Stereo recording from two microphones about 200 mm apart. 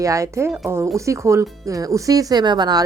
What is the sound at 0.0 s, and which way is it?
Speech, 15° right (ahead or behind).